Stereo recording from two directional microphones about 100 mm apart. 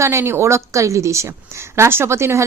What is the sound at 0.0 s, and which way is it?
A woman's voice, 25° right (ahead or behind).